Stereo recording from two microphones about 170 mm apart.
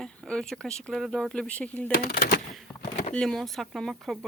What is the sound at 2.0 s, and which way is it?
Speech, 60° left (ahead or behind).